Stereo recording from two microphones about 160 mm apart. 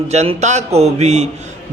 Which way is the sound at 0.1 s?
45° right (ahead or behind).